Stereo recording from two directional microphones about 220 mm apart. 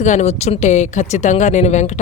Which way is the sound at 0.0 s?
30° left (ahead or behind).